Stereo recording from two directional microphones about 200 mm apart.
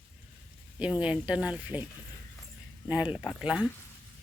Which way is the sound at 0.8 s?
5° right (ahead or behind).